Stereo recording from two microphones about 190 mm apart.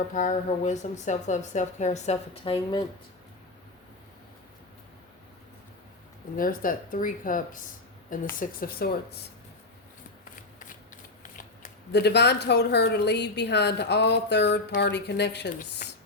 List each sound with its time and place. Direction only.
0.1 s speech: 45° left (ahead or behind); by 2.8 s 30° left (ahead or behind)
6.3 s speech: 45° left (ahead or behind)
11.9 s a woman's voice: 60° left (ahead or behind)